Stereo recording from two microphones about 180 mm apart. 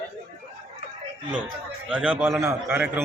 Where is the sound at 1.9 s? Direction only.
5° right (ahead or behind).